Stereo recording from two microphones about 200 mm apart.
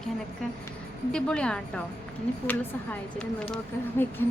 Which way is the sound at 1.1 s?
5° left (ahead or behind).